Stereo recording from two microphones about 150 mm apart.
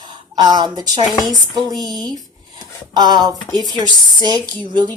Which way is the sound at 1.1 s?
Centre (ahead or behind).